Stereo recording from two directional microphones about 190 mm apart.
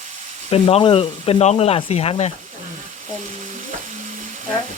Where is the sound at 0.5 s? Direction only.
30° left (ahead or behind).